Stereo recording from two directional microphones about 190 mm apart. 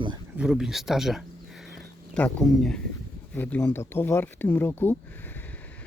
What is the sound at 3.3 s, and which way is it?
Speech, 10° left (ahead or behind).